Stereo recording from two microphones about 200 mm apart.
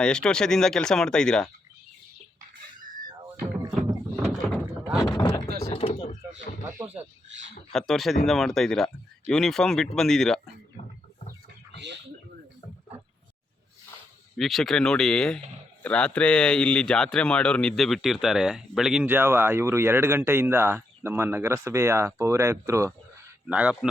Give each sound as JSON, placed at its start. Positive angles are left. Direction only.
{"t": 0.0, "sound": "speech", "side_deg": 5}
{"t": 3.7, "sound": "a sound", "side_deg": -5}
{"t": 4.6, "sound": "boat", "side_deg": -5}
{"t": 5.0, "sound": "a sound", "side_deg": 20}
{"t": 5.5, "sound": "a sound", "side_deg": -55}
{"t": 5.7, "sound": "door", "side_deg": 30}
{"t": 7.7, "sound": "speech", "side_deg": 0}
{"t": 11.7, "sound": "bird", "side_deg": -60}
{"t": 14.3, "sound": "a man's voice", "side_deg": 0}